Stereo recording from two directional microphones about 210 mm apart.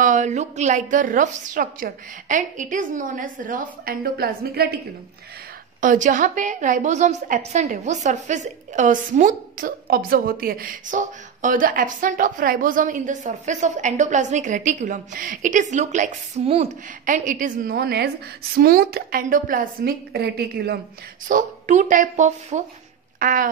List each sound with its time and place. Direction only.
0.0 s a woman's voice: 35° right (ahead or behind)
5.8 s a woman's voice: 40° right (ahead or behind)
21.3 s a woman's voice: 35° right (ahead or behind)
23.1 s a sound: 40° right (ahead or behind)